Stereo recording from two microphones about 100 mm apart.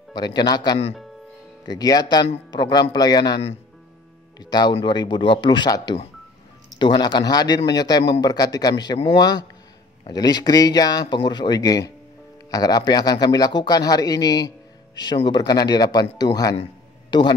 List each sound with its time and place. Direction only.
0.1 s a man's voice: 45° left (ahead or behind)
4.4 s a man's voice: 45° left (ahead or behind)